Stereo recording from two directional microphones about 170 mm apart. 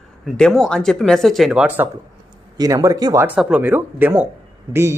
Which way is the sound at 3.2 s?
10° right (ahead or behind).